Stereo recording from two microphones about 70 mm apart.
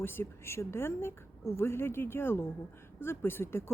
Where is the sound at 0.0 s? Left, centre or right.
Left.